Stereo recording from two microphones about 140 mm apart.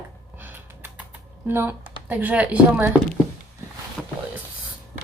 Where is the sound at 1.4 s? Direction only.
15° right (ahead or behind).